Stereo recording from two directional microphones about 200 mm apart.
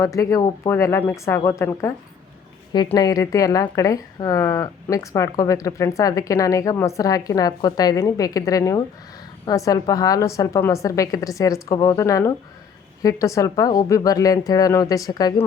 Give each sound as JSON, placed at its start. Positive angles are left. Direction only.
{"t": 0.0, "sound": "speech", "side_deg": 15}